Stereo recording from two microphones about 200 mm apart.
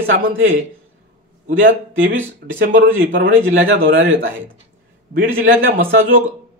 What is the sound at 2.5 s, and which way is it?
Speech, 65° right (ahead or behind).